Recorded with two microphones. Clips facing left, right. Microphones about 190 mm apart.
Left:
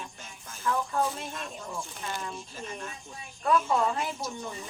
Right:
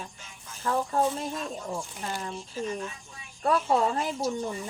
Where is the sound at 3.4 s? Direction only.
35° right (ahead or behind).